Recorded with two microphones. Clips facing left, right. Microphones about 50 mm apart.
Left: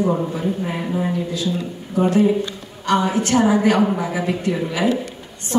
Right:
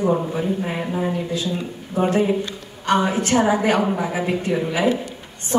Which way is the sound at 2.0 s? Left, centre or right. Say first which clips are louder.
Left 2 dB; right.